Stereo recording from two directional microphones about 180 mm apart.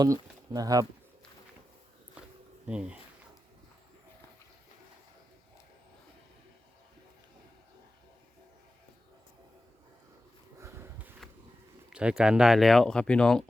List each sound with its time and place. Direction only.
0.0 s speech: 20° right (ahead or behind)
2.6 s speech: 5° right (ahead or behind)
10.6 s sniff: 15° right (ahead or behind)
11.9 s speech: 5° right (ahead or behind)